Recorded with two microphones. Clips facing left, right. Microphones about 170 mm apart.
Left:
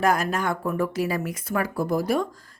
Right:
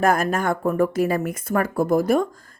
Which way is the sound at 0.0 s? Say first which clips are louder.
Right 3 dB; 50° right (ahead or behind).